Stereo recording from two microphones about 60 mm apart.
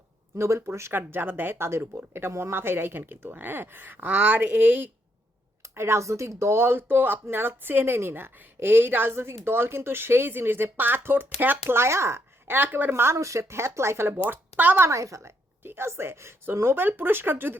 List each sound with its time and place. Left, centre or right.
0.3 s speech: right
0.9 s speech: right
5.6 s speech: right
12.5 s speech: right
12.9 s speech: right
14.8 s a woman's voice: right
15.6 s speech: right